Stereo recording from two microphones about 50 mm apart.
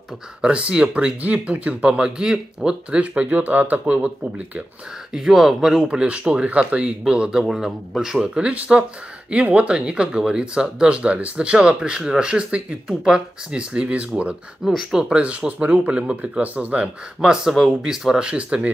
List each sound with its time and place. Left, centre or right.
0.4 s speech: right
3.8 s speech: right
5.1 s speech: centre
5.8 s speech: centre
7.4 s a man's voice: centre; by 14.3 s right
14.6 s speech: centre
18.2 s speech: right